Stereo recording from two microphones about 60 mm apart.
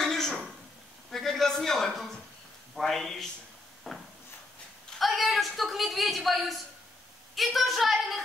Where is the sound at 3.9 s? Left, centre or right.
Centre.